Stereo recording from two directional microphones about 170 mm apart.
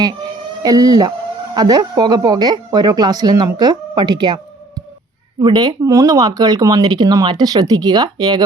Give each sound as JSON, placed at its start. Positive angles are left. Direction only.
{"t": 0.6, "sound": "speech", "side_deg": -20}